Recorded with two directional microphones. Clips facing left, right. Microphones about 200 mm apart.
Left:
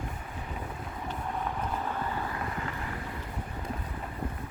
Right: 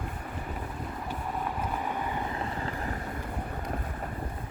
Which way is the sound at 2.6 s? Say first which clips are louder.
Right 2 dB; 40° right (ahead or behind).